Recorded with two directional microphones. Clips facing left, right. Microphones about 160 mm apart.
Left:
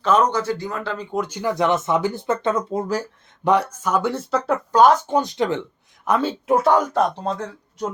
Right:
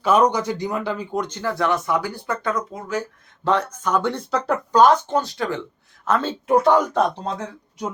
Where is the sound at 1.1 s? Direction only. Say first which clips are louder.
Left 4 dB; 10° left (ahead or behind); by 3.0 s 35° left (ahead or behind).